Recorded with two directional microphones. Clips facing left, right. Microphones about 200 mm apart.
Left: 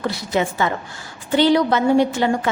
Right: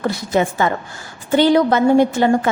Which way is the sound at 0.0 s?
50° right (ahead or behind).